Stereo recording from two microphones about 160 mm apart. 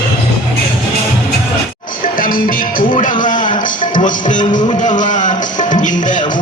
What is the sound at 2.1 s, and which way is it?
Music, 60° left (ahead or behind).